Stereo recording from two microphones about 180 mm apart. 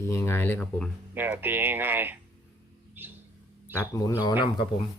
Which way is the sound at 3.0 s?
10° right (ahead or behind).